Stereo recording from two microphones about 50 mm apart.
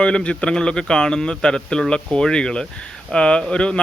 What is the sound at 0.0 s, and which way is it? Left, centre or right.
Speech, centre.